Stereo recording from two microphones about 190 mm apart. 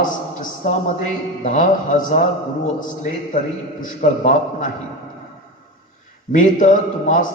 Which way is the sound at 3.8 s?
45° left (ahead or behind).